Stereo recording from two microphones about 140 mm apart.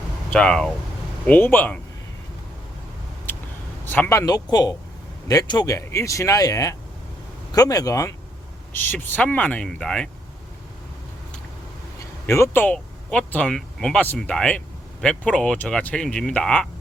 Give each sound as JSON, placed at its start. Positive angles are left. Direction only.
{"t": 0.3, "sound": "speech", "side_deg": 5}
{"t": 3.8, "sound": "speech", "side_deg": 15}
{"t": 4.3, "sound": "speech", "side_deg": 30}
{"t": 8.7, "sound": "speech", "side_deg": 15}
{"t": 12.2, "sound": "speech", "side_deg": 15}